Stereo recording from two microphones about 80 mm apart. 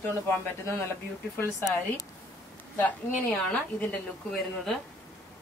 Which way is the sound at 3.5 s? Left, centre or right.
Centre.